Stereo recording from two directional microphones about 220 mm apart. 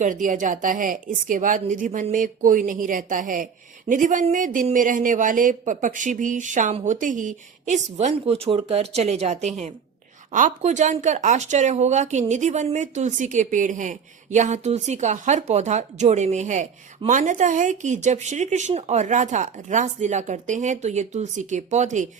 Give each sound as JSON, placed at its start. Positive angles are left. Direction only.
{"t": 0.0, "sound": "speech", "side_deg": -35}